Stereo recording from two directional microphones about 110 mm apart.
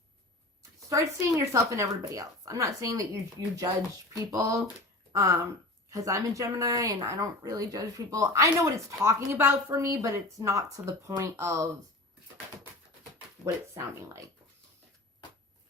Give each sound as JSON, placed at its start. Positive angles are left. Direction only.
{"t": 0.9, "sound": "a woman's voice", "side_deg": -30}
{"t": 13.4, "sound": "a woman's voice", "side_deg": -25}